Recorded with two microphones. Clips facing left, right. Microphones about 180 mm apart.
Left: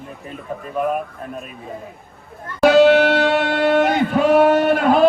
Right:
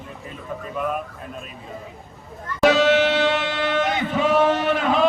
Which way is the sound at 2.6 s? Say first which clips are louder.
Left 5 dB; 60° left (ahead or behind).